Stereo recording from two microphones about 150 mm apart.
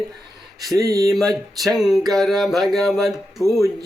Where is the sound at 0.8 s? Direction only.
20° right (ahead or behind).